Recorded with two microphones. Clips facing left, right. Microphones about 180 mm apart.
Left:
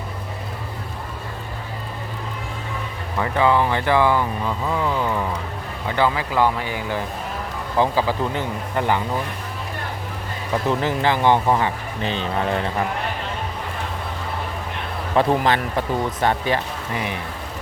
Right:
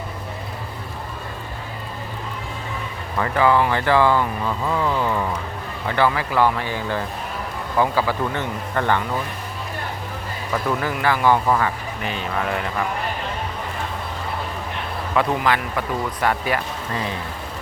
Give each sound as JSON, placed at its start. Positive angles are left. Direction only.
{"t": 3.2, "sound": "speech", "side_deg": 20}
{"t": 10.5, "sound": "speech", "side_deg": 25}
{"t": 15.1, "sound": "speech", "side_deg": 30}
{"t": 16.9, "sound": "speech", "side_deg": 15}